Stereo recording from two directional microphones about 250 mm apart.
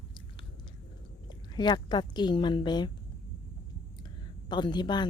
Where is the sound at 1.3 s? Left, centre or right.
Centre.